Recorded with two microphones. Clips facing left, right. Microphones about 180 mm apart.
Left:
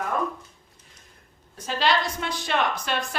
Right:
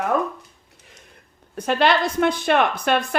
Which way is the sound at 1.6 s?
60° right (ahead or behind).